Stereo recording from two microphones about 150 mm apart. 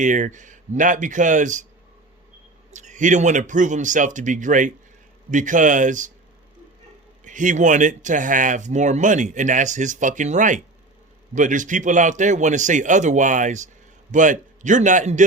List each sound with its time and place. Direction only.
0.0 s speech: 55° right (ahead or behind)
2.7 s speech: 55° right (ahead or behind)
7.3 s speech: 55° right (ahead or behind)